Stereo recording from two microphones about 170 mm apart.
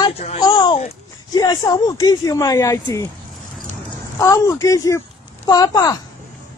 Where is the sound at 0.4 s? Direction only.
25° left (ahead or behind).